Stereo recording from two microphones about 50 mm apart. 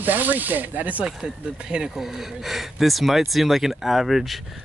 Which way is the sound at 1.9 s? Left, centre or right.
Centre.